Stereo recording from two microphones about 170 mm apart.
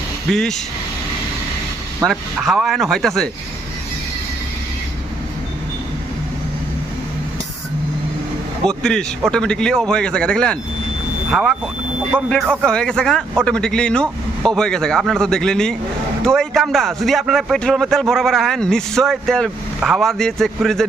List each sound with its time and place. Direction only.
0.3 s speech: 5° left (ahead or behind)
2.0 s speech: centre (ahead or behind)
8.6 s speech: 5° left (ahead or behind); by 12.3 s 10° right (ahead or behind)
12.6 s speech: 5° left (ahead or behind)